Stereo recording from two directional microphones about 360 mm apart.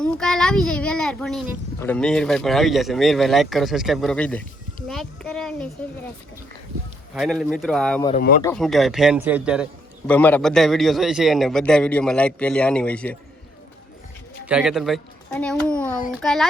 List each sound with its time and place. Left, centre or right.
0.0 s child singing: centre
1.8 s a man's voice: centre
7.2 s a man's voice: centre
8.1 s speech: left
8.4 s a man's voice: centre
14.4 s a child's voice: centre
15.9 s a child's voice: left
16.1 s a man's voice: centre